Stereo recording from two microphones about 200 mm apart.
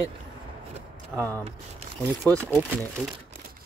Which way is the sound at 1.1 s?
15° right (ahead or behind).